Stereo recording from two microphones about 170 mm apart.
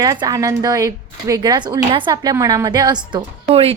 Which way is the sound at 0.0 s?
20° right (ahead or behind).